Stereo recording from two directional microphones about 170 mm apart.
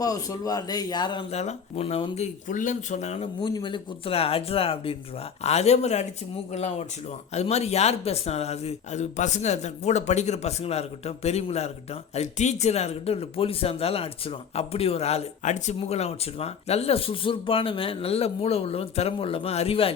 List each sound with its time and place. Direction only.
0.0 s a man's voice: 20° left (ahead or behind)
1.3 s speech: 40° left (ahead or behind)
3.4 s speech: 25° left (ahead or behind)